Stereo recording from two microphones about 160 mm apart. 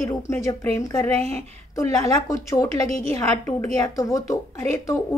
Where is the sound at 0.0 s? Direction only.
15° left (ahead or behind).